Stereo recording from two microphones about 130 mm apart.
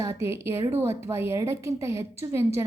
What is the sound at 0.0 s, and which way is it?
A woman's voice, 20° right (ahead or behind).